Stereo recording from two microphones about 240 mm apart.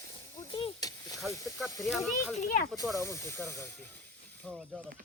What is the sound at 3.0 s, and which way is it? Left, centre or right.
Speech, centre.